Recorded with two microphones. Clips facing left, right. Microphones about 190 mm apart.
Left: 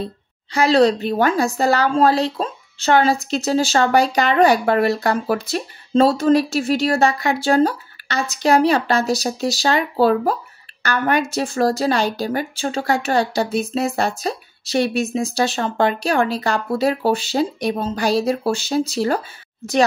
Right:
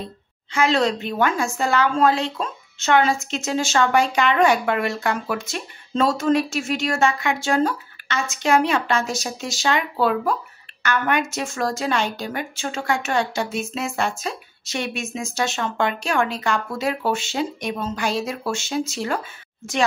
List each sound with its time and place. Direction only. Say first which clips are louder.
0.0 s a woman's voice: left 6 dB; 35° left (ahead or behind)